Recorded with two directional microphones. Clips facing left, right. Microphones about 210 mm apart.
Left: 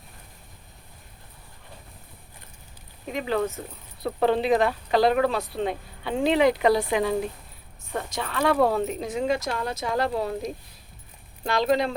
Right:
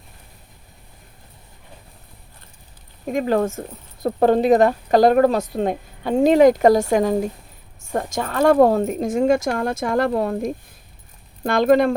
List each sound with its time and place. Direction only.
3.1 s a woman's voice: 45° right (ahead or behind)